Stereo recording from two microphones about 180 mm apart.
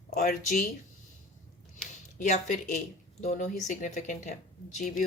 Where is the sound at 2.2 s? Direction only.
45° left (ahead or behind).